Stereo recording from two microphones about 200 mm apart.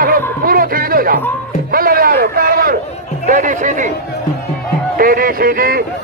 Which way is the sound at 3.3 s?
40° right (ahead or behind).